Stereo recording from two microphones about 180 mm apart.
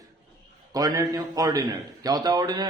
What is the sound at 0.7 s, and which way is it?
A man's voice, 20° right (ahead or behind).